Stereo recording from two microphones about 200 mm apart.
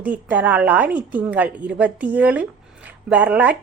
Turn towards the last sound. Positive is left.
turn(degrees=-5)  # may be behind; listen again after turning